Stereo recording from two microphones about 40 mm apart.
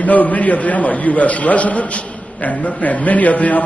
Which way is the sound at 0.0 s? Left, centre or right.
Left.